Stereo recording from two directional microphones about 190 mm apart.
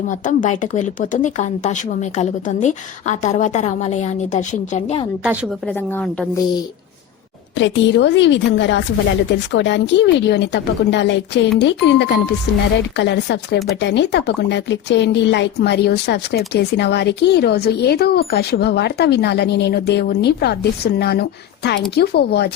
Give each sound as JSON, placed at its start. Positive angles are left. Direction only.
{"t": 0.3, "sound": "speech", "side_deg": 40}
{"t": 7.6, "sound": "speech", "side_deg": 70}